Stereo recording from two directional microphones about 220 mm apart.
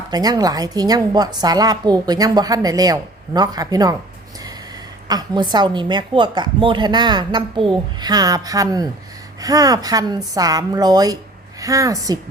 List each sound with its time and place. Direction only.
0.1 s a woman's voice: 15° right (ahead or behind)
5.0 s a woman's voice: 20° right (ahead or behind)